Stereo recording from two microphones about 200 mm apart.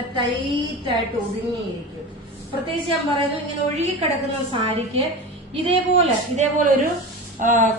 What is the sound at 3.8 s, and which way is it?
Speech, 35° right (ahead or behind).